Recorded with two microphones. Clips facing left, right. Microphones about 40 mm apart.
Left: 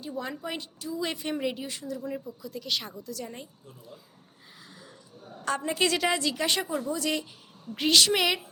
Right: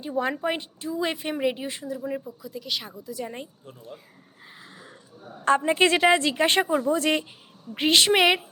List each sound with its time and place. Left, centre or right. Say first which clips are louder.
0.0 s a woman's voice: right 8 dB; right
2.4 s speech: right 1 dB; centre
3.1 s a woman's voice: right 8 dB; right
3.7 s speech: right 6 dB; right
4.7 s a woman's voice: right 3 dB; right